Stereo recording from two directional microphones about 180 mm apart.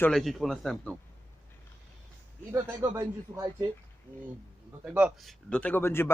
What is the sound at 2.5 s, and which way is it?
Speech, 15° right (ahead or behind).